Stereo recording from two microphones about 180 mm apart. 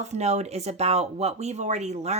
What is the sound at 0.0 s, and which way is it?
Speech, 40° right (ahead or behind).